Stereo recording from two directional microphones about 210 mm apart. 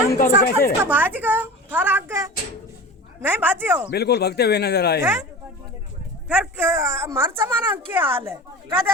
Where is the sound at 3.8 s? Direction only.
50° left (ahead or behind).